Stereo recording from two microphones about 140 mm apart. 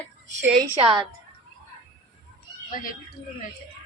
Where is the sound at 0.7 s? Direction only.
35° right (ahead or behind).